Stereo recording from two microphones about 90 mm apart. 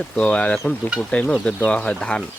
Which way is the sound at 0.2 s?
15° left (ahead or behind).